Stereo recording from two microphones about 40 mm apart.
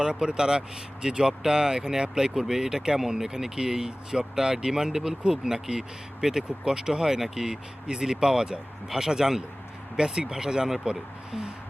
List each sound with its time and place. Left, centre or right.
0.0 s speech: right